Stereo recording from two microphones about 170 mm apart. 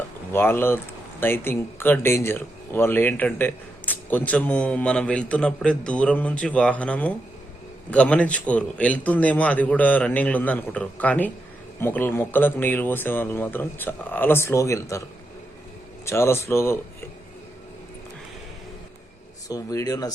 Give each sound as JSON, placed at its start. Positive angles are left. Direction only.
{"t": 0.3, "sound": "speech", "side_deg": 15}
{"t": 16.0, "sound": "speech", "side_deg": 15}
{"t": 19.5, "sound": "speech", "side_deg": 20}